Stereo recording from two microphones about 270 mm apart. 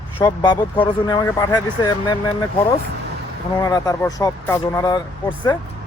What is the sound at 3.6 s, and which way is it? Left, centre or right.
Speech, centre.